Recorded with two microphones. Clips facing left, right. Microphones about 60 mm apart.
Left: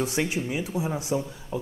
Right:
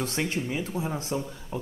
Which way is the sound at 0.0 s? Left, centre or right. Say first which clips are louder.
Left 2 dB; centre.